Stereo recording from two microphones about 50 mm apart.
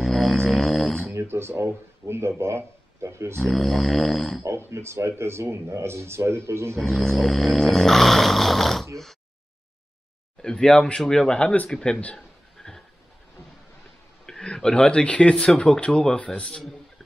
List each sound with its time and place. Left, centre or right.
0.0 s a sound: centre
1.1 s speech: right
3.4 s snoring: centre
4.5 s speech: right
6.8 s snoring: centre
10.4 s speech: centre
12.2 s a sound: centre
14.2 s a man's voice: centre